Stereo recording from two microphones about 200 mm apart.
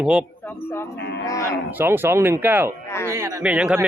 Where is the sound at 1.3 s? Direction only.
15° left (ahead or behind).